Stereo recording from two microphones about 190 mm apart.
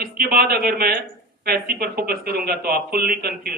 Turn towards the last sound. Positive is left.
turn(degrees=-55)  # may be behind; listen again after turning